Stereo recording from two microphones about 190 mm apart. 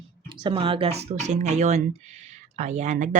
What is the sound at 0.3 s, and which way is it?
Speech, 25° right (ahead or behind).